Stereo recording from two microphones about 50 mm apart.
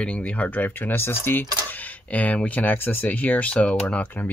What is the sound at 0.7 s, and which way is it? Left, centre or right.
Speech, left.